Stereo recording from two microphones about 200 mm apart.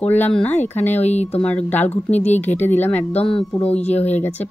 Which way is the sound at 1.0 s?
35° left (ahead or behind).